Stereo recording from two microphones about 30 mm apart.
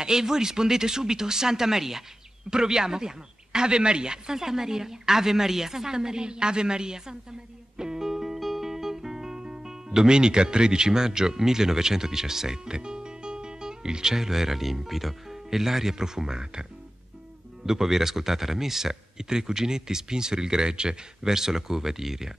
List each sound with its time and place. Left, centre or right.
0.0 s a man's voice: centre
4.4 s a man's voice: centre
7.7 s music: centre
14.1 s speech: centre
17.6 s a man's voice: centre; by 21.0 s right
21.2 s speech: centre